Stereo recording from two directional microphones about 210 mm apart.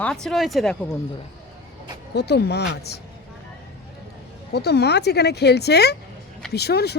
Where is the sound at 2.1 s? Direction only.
50° left (ahead or behind).